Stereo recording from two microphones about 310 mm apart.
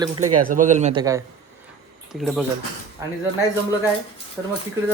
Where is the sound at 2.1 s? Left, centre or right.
Centre.